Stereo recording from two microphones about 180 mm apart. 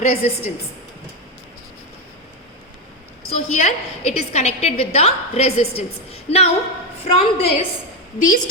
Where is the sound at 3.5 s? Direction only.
40° left (ahead or behind).